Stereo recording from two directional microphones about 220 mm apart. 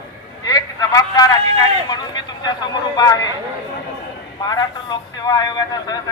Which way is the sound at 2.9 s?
15° left (ahead or behind).